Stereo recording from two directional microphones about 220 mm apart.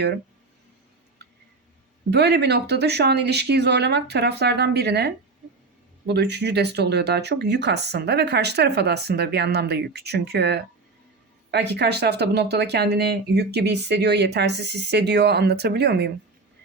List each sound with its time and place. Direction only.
2.0 s speech: 50° right (ahead or behind)